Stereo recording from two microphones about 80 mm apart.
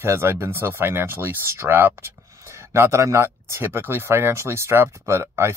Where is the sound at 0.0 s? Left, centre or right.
Right.